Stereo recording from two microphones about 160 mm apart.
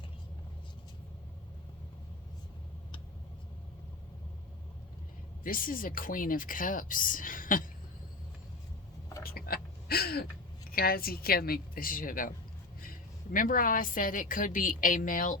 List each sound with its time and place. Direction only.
5.4 s speech: 60° left (ahead or behind)
9.2 s a sound: 70° left (ahead or behind)
10.7 s a woman's voice: 70° left (ahead or behind)
13.3 s speech: 60° left (ahead or behind)